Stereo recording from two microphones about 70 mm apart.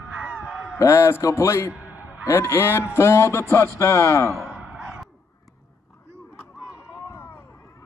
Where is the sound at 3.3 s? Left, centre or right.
Left.